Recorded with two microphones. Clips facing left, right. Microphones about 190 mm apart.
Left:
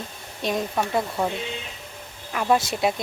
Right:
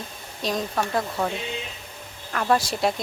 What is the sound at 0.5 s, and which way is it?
Speech, 10° left (ahead or behind).